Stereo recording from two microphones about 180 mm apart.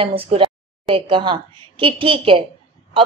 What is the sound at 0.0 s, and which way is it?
A woman's voice, 30° right (ahead or behind).